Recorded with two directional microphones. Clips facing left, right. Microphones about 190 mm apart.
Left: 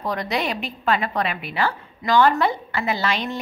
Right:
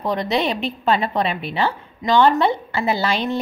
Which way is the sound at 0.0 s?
25° right (ahead or behind).